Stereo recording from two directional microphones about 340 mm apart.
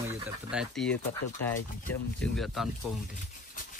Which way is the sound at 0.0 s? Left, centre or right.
Centre.